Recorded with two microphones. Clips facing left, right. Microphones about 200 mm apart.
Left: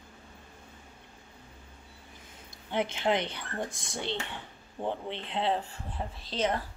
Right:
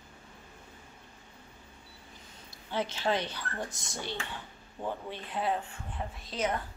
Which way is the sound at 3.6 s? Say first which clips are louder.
Left 3 dB; 55° left (ahead or behind).